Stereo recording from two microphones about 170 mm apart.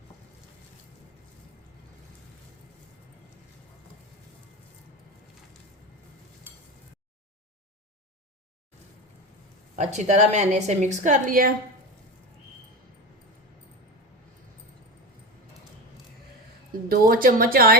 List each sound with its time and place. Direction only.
9.7 s a woman's voice: 45° right (ahead or behind)
16.9 s speech: 60° right (ahead or behind)